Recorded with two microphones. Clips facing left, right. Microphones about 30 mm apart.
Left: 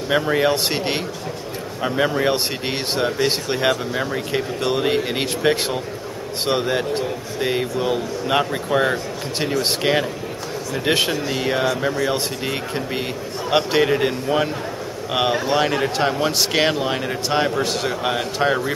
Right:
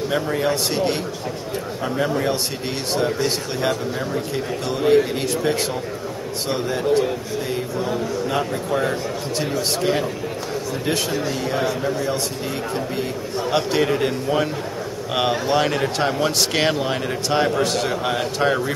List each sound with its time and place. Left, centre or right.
0.1 s speech: left
11.5 s speech: left
13.5 s a man's voice: left